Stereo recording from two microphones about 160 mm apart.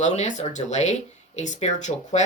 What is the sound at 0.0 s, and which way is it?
Speech, 45° left (ahead or behind).